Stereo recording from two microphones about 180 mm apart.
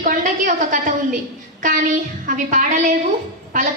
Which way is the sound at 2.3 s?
50° right (ahead or behind).